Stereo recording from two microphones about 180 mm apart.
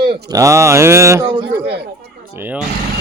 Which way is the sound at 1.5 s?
60° right (ahead or behind).